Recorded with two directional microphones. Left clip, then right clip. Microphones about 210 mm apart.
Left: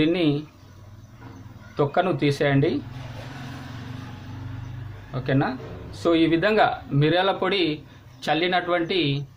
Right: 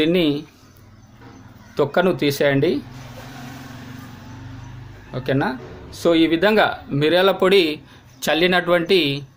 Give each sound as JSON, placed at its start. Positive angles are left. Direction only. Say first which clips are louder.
{"t": 0.0, "sound": "speech", "louder": "right 4 dB", "side_deg": -50}
{"t": 1.7, "sound": "speech", "louder": "right 4 dB", "side_deg": -45}
{"t": 5.1, "sound": "speech", "louder": "right 3 dB", "side_deg": -45}